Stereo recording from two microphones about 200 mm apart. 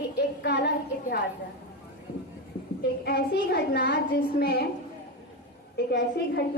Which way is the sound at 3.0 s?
55° left (ahead or behind).